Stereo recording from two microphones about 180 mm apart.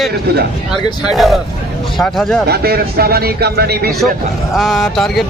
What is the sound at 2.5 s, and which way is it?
Speech, 60° right (ahead or behind).